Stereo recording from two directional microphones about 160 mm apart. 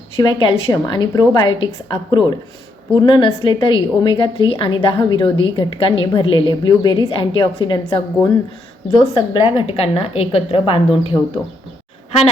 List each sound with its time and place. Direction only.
0.2 s a woman's voice: 30° left (ahead or behind)